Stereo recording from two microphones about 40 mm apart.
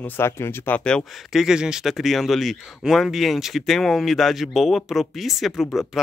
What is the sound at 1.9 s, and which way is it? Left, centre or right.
Speech, centre.